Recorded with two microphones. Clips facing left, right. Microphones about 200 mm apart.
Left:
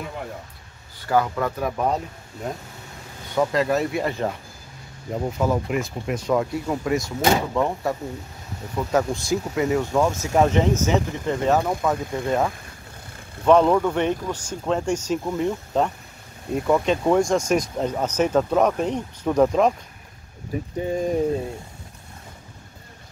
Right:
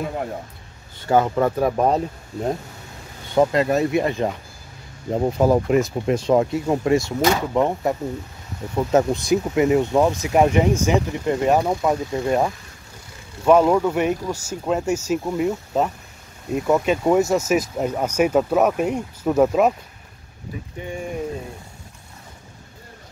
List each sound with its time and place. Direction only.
1.0 s speech: 25° right (ahead or behind)
3.3 s speech: 25° right (ahead or behind)
5.1 s speech: 35° right (ahead or behind); by 12.4 s 15° right (ahead or behind)
13.5 s speech: 10° right (ahead or behind)
20.8 s speech: 35° left (ahead or behind)